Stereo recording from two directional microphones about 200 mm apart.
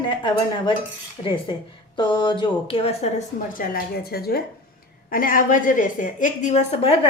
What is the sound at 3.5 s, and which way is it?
A woman's voice, 45° left (ahead or behind).